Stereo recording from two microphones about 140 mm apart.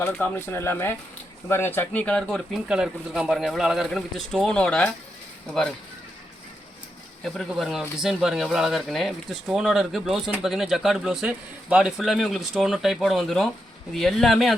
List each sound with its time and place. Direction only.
0.0 s speech: 15° left (ahead or behind)
2.6 s speech: 5° right (ahead or behind)
7.3 s speech: centre (ahead or behind)